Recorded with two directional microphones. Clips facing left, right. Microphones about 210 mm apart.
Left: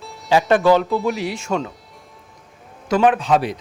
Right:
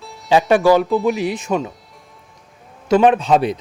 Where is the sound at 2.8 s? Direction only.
25° right (ahead or behind).